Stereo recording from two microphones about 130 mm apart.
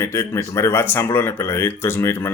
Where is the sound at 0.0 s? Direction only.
20° left (ahead or behind).